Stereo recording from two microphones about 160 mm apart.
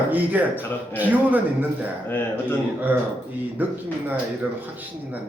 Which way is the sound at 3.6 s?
10° right (ahead or behind).